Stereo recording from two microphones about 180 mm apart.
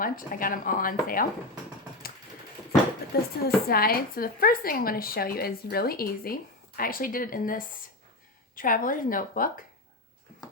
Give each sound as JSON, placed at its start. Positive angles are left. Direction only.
{"t": 0.0, "sound": "speech", "side_deg": 50}
{"t": 3.1, "sound": "speech", "side_deg": 55}